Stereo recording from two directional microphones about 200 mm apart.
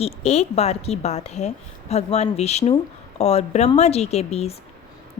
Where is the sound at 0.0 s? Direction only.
30° left (ahead or behind).